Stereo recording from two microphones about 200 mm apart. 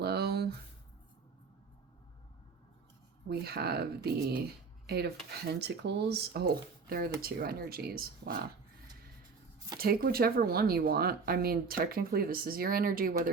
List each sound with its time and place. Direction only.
0.0 s a sound: 55° right (ahead or behind)
3.2 s speech: 55° right (ahead or behind)
9.7 s speech: 50° right (ahead or behind)